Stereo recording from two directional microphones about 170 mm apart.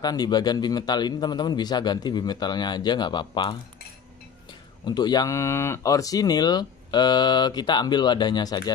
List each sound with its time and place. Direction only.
0.0 s speech: 25° left (ahead or behind)
4.8 s speech: 25° left (ahead or behind)